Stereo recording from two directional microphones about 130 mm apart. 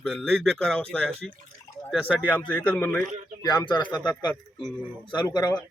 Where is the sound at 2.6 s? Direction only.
15° left (ahead or behind).